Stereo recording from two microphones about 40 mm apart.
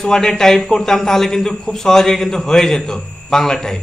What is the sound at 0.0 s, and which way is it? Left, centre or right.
Speech, centre.